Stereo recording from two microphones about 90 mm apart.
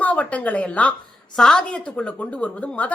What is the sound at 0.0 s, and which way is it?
A woman's voice, 15° left (ahead or behind).